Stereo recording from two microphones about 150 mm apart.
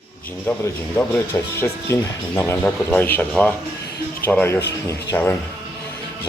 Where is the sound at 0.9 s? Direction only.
15° left (ahead or behind).